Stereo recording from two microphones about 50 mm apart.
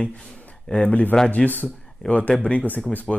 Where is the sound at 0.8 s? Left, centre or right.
Left.